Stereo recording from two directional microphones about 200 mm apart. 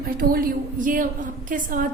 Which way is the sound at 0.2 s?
45° right (ahead or behind).